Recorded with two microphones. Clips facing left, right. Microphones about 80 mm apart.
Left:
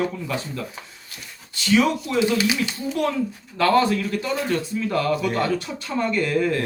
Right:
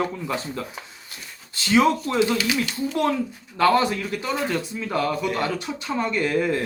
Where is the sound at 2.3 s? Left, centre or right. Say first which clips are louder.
Left 2 dB; left.